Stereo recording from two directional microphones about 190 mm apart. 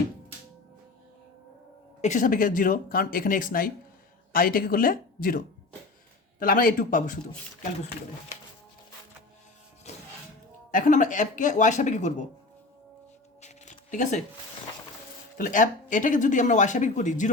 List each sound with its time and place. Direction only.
2.0 s speech: 40° left (ahead or behind)
6.4 s speech: 50° left (ahead or behind)
10.7 s speech: 45° left (ahead or behind)
13.4 s a sound: 40° left (ahead or behind)
15.4 s speech: 45° left (ahead or behind)